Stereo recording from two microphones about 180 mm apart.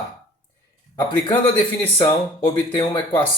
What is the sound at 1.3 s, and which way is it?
Speech, 25° left (ahead or behind).